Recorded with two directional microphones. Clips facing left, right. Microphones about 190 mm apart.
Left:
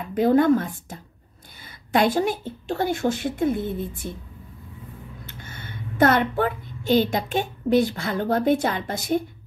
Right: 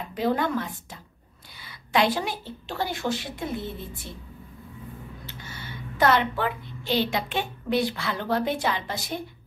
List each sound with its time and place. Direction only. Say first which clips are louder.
0.1 s a woman's voice: left 8 dB; 50° left (ahead or behind)
5.2 s a woman's voice: left 1 dB; 50° left (ahead or behind)